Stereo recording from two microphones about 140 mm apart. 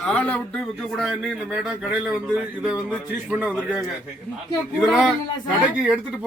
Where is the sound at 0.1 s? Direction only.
10° left (ahead or behind).